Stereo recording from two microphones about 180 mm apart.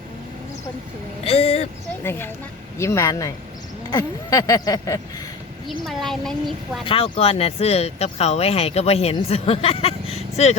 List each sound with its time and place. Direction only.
1.2 s speech: 35° left (ahead or behind)
2.0 s speech: 10° left (ahead or behind)
3.9 s a sound: 20° left (ahead or behind)
5.6 s speech: centre (ahead or behind)
6.8 s speech: 30° left (ahead or behind)